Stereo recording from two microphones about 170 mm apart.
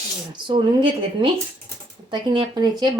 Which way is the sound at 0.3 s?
30° right (ahead or behind).